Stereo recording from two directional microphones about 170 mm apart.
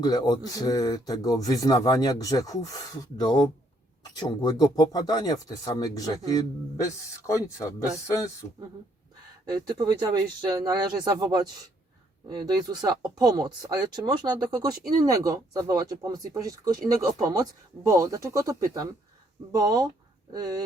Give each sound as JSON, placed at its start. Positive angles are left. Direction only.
{"t": 0.0, "sound": "speech", "side_deg": 25}
{"t": 9.6, "sound": "speech", "side_deg": -25}